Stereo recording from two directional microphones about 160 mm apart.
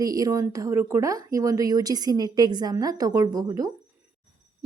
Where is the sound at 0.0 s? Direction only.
20° right (ahead or behind).